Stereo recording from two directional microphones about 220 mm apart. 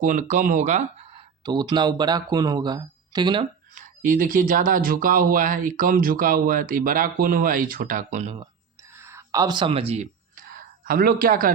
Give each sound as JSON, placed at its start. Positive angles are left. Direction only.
{"t": 0.0, "sound": "speech", "side_deg": -35}
{"t": 1.5, "sound": "speech", "side_deg": -20}
{"t": 3.8, "sound": "speech", "side_deg": -40}
{"t": 8.9, "sound": "a sound", "side_deg": -10}